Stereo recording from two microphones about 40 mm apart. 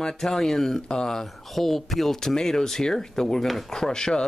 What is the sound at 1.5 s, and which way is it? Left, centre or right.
Speech, centre.